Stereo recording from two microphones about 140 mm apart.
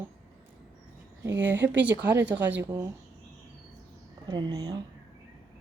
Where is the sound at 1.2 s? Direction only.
15° right (ahead or behind).